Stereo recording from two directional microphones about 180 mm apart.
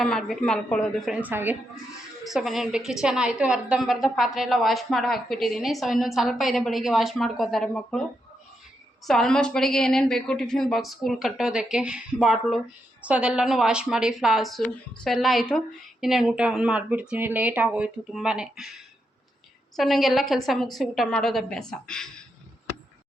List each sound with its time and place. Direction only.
0.0 s a woman's voice: centre (ahead or behind)
1.1 s a woman's voice: 10° right (ahead or behind)
9.0 s a woman's voice: 5° left (ahead or behind)
19.7 s a woman's voice: centre (ahead or behind)